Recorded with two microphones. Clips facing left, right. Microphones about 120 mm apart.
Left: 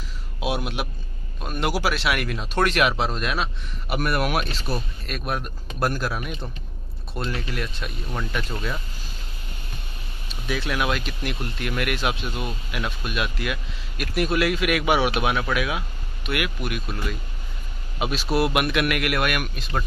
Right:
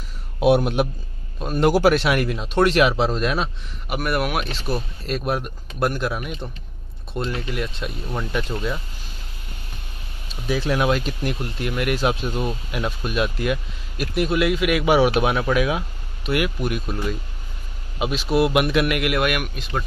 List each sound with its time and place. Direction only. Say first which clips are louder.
0.6 s speech: right 8 dB; 40° right (ahead or behind)
1.4 s speech: right 7 dB; 30° right (ahead or behind)
1.7 s speech: right 9 dB; 45° right (ahead or behind)
2.0 s speech: right 4 dB; 30° right (ahead or behind)
3.9 s speech: right 1 dB; 5° right (ahead or behind)
10.4 s speech: right 5 dB; 30° right (ahead or behind)
14.2 s speech: right 2 dB; 20° right (ahead or behind)
17.9 s speech: right 3 dB; 20° right (ahead or behind)